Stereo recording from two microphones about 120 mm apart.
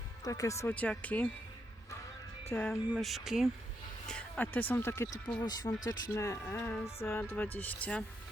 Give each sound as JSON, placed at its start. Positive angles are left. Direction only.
{"t": 0.3, "sound": "speech", "side_deg": 25}
{"t": 0.7, "sound": "speech", "side_deg": 10}
{"t": 2.5, "sound": "speech", "side_deg": 15}
{"t": 3.0, "sound": "speech", "side_deg": 0}
{"t": 4.0, "sound": "a sound", "side_deg": 10}
{"t": 4.7, "sound": "speech", "side_deg": 20}
{"t": 5.4, "sound": "speech", "side_deg": 35}